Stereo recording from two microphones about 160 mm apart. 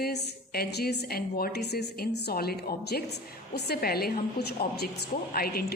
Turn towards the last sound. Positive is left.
turn(degrees=75)  # may be behind; listen again after turning